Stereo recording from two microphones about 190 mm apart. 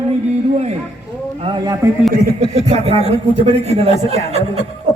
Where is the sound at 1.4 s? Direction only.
20° right (ahead or behind).